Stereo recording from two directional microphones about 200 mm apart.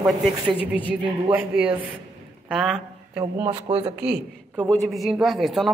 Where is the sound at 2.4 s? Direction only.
Centre (ahead or behind).